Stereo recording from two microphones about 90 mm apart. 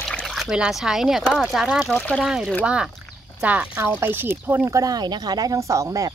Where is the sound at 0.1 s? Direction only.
10° left (ahead or behind).